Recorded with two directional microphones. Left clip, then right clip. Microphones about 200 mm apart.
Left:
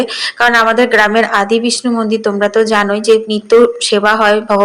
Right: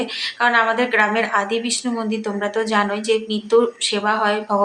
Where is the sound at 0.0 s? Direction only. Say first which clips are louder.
Left 7 dB; 35° left (ahead or behind).